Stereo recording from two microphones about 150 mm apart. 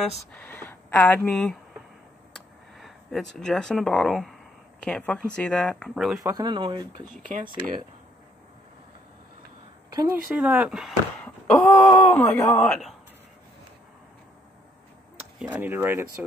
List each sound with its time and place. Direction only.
0.3 s speech: 10° left (ahead or behind)
6.2 s speech: 25° right (ahead or behind)
7.2 s speech: 60° right (ahead or behind)
10.3 s speech: 10° right (ahead or behind)
11.2 s speech: 15° left (ahead or behind)
12.5 s a man's voice: 5° left (ahead or behind)
15.5 s speech: 10° right (ahead or behind)